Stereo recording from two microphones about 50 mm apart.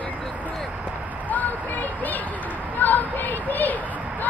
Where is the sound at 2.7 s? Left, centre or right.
Left.